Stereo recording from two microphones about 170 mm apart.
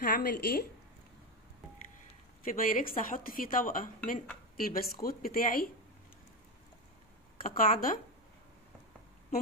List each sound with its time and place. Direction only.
0.0 s a woman's voice: 65° left (ahead or behind)
2.4 s a woman's voice: 55° left (ahead or behind)
7.4 s a woman's voice: 55° left (ahead or behind)